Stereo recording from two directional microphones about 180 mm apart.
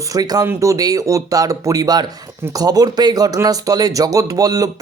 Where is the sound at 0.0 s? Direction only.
20° right (ahead or behind).